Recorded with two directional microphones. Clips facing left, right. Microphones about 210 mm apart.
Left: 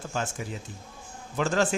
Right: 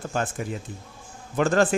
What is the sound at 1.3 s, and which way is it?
Speech, 55° right (ahead or behind).